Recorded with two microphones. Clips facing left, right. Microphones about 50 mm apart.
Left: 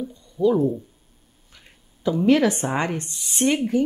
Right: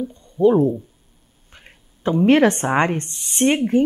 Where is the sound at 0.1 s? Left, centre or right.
Right.